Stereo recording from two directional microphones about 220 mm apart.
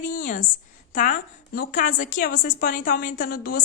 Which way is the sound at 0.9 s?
35° left (ahead or behind).